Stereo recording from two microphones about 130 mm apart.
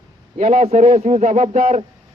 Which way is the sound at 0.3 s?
70° right (ahead or behind).